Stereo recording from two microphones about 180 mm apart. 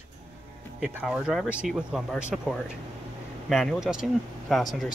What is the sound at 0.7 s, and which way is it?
Speech, 5° right (ahead or behind).